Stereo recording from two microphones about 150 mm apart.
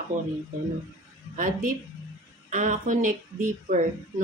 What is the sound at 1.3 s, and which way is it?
Speech, 60° right (ahead or behind).